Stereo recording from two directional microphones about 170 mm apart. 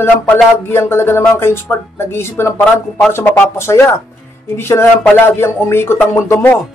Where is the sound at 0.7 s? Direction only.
15° left (ahead or behind).